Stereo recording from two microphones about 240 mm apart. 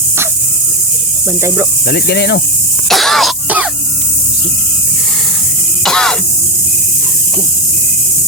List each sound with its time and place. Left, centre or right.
1.9 s cricket: left
2.9 s throat clearing: centre
5.8 s music: centre